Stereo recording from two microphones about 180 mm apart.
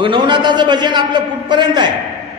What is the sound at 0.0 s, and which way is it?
A man's voice, 25° right (ahead or behind).